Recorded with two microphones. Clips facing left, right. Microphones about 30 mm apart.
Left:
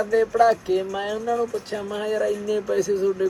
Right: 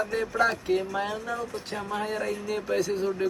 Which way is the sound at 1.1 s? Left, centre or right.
Right.